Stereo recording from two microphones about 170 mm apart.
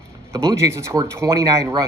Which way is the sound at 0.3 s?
15° right (ahead or behind).